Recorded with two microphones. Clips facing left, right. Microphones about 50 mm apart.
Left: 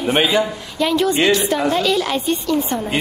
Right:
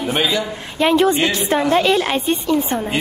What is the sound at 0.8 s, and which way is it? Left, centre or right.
A man's voice, right.